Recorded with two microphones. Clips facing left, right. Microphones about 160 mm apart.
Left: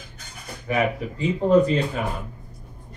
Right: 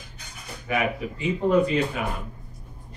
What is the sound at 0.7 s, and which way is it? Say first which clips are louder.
Speech: left 2 dB; 35° left (ahead or behind).